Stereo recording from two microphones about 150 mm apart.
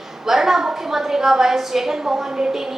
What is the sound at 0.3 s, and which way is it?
A woman's voice, centre (ahead or behind).